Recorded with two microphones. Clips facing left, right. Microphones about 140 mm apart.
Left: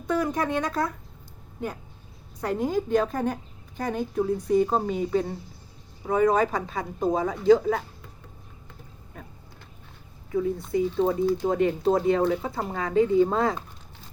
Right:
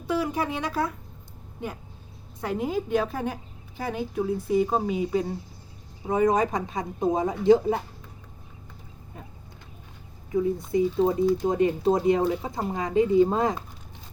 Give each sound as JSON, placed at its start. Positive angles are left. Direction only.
{"t": 0.1, "sound": "speech", "side_deg": -5}
{"t": 2.4, "sound": "speech", "side_deg": -5}
{"t": 6.1, "sound": "speech", "side_deg": -20}
{"t": 10.9, "sound": "speech", "side_deg": -10}